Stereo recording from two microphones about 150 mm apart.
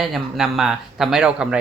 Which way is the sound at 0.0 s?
Centre (ahead or behind).